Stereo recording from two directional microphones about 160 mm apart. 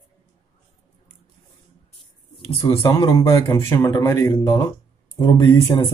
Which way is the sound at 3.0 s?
20° left (ahead or behind).